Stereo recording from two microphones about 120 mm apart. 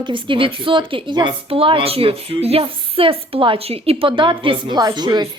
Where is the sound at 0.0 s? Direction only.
45° right (ahead or behind).